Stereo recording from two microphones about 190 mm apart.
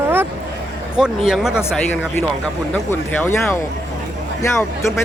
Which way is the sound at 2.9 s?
10° left (ahead or behind).